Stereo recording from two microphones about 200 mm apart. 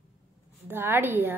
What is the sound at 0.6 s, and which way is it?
Speech, 10° right (ahead or behind).